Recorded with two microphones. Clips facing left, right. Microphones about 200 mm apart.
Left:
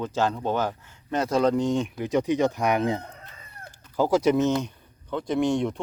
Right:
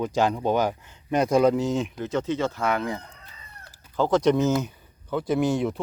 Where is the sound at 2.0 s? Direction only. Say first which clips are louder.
Left 3 dB; 15° left (ahead or behind).